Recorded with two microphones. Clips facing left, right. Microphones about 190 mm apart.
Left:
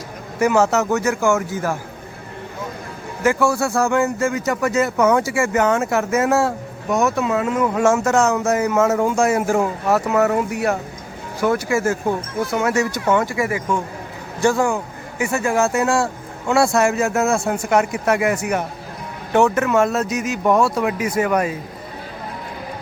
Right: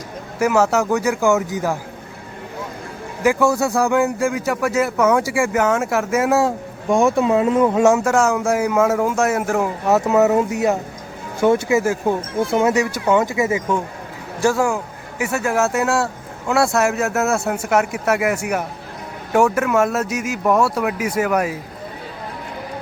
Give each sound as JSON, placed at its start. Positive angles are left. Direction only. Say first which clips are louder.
{"t": 0.3, "sound": "speech", "louder": "even", "side_deg": -5}
{"t": 3.2, "sound": "speech", "louder": "right 1 dB", "side_deg": -20}
{"t": 6.8, "sound": "speech", "louder": "right 3 dB", "side_deg": -25}
{"t": 7.8, "sound": "speech", "louder": "right 1 dB", "side_deg": -15}
{"t": 9.8, "sound": "speech", "louder": "right 5 dB", "side_deg": -20}
{"t": 12.4, "sound": "speech", "louder": "right 5 dB", "side_deg": -25}
{"t": 12.7, "sound": "speech", "louder": "right 1 dB", "side_deg": -15}
{"t": 14.4, "sound": "speech", "louder": "even", "side_deg": -5}